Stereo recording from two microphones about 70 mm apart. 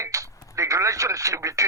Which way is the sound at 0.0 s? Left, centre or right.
Right.